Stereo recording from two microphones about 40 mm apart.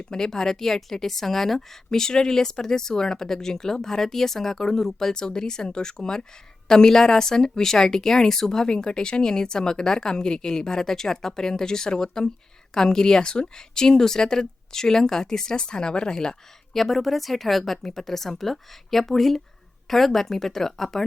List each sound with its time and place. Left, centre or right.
0.1 s a woman's voice: centre
8.7 s a woman's voice: left
16.7 s a woman's voice: centre